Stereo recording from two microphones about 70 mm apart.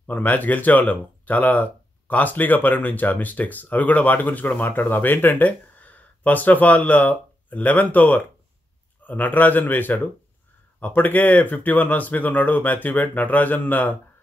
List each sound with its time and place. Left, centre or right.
0.0 s speech: left